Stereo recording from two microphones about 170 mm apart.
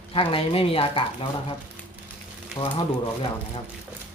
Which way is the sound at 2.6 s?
25° left (ahead or behind).